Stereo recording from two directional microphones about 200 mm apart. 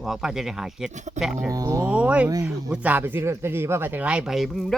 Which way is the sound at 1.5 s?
15° right (ahead or behind).